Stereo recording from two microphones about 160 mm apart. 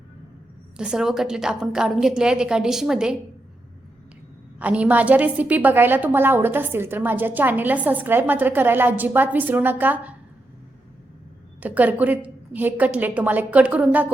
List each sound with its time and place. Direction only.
0.8 s a woman's voice: 5° right (ahead or behind)
4.6 s a woman's voice: 10° right (ahead or behind)
11.6 s a woman's voice: 10° right (ahead or behind)